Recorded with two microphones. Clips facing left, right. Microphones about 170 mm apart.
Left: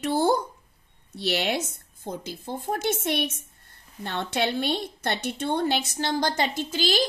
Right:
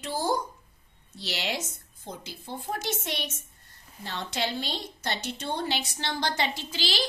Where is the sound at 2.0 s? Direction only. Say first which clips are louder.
Left 7 dB; 50° left (ahead or behind).